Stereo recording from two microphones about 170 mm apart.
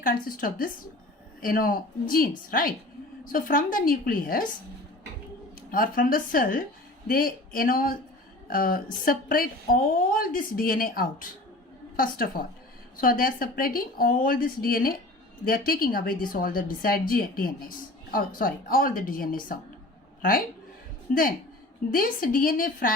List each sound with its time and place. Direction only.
0.0 s a woman's voice: 55° left (ahead or behind)
5.5 s a woman's voice: 55° left (ahead or behind)
21.1 s a woman's voice: 55° left (ahead or behind)